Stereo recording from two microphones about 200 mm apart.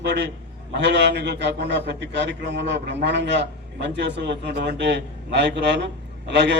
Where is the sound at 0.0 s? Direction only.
60° right (ahead or behind).